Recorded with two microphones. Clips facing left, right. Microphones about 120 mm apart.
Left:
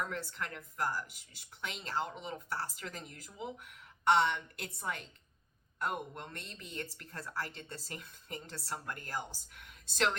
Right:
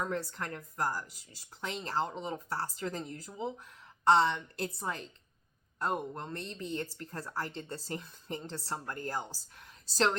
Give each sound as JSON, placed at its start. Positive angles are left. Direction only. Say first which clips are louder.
{"t": 0.0, "sound": "speech", "louder": "right 4 dB", "side_deg": -35}